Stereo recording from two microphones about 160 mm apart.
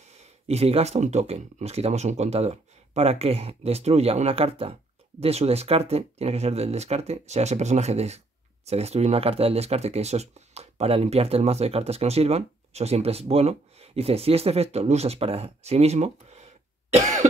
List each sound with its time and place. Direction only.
0.0 s speech: 45° right (ahead or behind)
17.0 s cough: 50° right (ahead or behind)